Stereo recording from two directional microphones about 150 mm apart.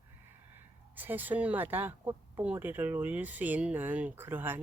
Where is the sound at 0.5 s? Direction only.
10° right (ahead or behind).